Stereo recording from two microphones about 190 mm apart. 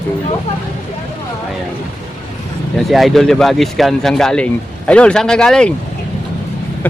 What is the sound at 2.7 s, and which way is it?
Speech, centre (ahead or behind).